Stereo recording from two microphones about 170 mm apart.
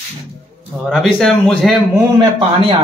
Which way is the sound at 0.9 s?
Centre (ahead or behind).